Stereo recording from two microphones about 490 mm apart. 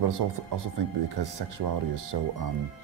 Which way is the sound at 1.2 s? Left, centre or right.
Right.